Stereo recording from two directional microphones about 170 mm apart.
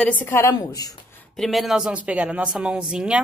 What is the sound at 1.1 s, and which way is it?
Speech, centre (ahead or behind).